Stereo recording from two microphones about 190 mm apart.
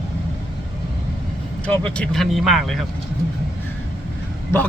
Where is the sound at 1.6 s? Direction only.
5° left (ahead or behind).